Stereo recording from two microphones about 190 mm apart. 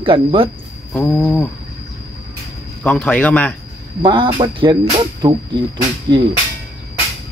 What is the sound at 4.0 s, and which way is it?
Speech, 25° right (ahead or behind).